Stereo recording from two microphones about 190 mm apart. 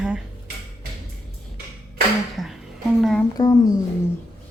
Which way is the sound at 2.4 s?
Centre (ahead or behind).